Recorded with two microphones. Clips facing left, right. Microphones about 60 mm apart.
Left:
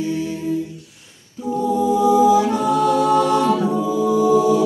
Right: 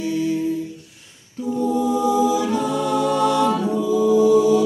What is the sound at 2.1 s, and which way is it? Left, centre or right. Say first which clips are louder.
A capella: left 4 dB; left.